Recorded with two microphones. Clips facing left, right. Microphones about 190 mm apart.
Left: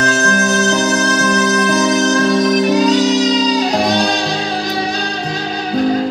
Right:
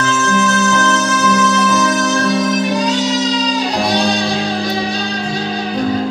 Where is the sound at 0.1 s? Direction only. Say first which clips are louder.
Even; 40° left (ahead or behind).